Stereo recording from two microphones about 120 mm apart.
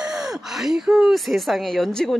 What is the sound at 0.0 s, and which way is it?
Speech, 5° right (ahead or behind).